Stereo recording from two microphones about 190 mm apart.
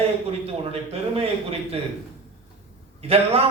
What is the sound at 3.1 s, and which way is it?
Speech, 30° right (ahead or behind).